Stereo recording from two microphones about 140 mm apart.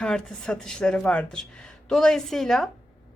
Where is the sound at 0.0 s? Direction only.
5° left (ahead or behind).